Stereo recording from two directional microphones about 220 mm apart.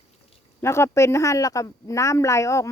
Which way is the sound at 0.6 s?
10° left (ahead or behind).